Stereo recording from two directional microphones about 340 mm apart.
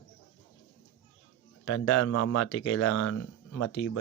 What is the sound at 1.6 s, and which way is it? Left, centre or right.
Speech, left.